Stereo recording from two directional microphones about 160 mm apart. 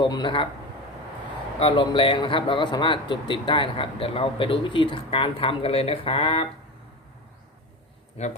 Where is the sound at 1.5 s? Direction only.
30° left (ahead or behind).